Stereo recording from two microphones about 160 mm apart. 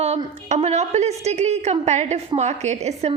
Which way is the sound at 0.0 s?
40° right (ahead or behind).